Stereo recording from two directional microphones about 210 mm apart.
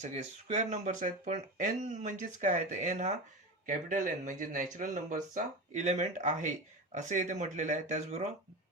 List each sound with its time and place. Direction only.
0.0 s speech: 30° right (ahead or behind)